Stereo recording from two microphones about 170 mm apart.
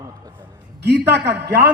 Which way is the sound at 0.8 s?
80° right.